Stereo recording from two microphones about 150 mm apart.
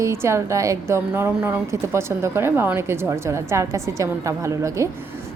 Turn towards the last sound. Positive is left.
turn(degrees=-20)  # may be behind; listen again after turning